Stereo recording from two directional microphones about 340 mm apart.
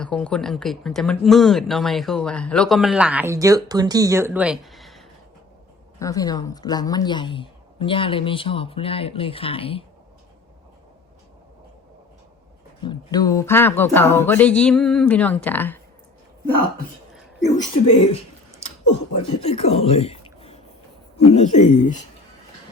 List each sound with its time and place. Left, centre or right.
0.0 s speech: centre
12.8 s speech: centre
17.6 s speech: centre
19.2 s speech: centre